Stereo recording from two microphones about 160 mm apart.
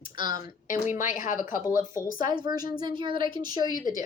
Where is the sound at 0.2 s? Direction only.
25° right (ahead or behind).